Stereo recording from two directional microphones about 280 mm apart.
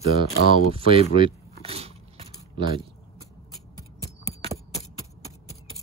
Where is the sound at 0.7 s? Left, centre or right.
Centre.